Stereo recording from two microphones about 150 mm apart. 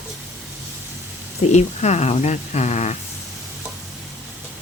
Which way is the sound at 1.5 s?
45° left (ahead or behind).